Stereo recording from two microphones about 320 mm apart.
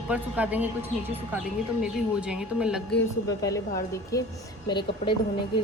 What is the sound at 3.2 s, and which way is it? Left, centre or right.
Speech, centre.